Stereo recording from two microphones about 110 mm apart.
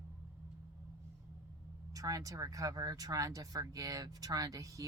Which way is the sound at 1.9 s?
30° right (ahead or behind).